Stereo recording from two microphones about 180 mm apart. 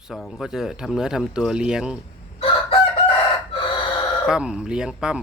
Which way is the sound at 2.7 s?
30° left (ahead or behind).